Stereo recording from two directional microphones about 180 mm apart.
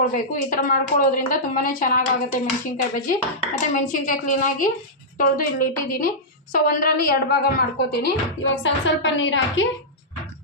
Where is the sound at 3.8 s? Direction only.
45° left (ahead or behind).